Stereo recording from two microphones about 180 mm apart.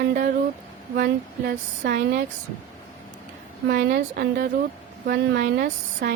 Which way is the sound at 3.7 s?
60° right (ahead or behind).